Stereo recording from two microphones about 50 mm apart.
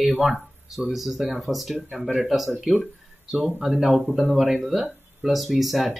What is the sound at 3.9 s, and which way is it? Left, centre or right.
Speech, centre.